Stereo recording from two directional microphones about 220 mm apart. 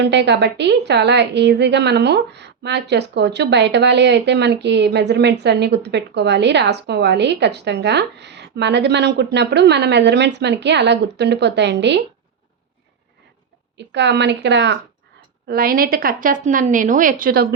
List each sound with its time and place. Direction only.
0.0 s a woman's voice: 50° right (ahead or behind)
13.7 s a woman's voice: 50° right (ahead or behind)
15.4 s a woman's voice: 40° right (ahead or behind)